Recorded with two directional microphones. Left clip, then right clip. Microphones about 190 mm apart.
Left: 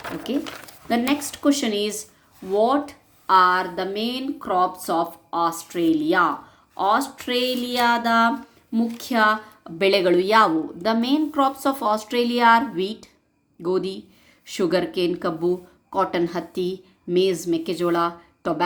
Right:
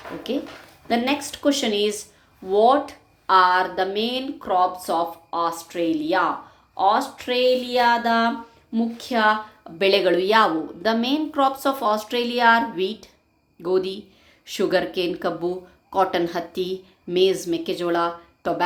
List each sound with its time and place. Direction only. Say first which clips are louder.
0.3 s a woman's voice: right 1 dB; 20° left (ahead or behind)